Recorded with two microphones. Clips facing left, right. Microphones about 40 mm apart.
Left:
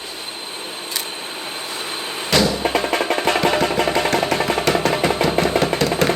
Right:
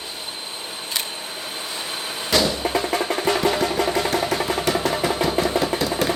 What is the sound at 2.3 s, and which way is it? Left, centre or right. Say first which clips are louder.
Music: left 3 dB; left.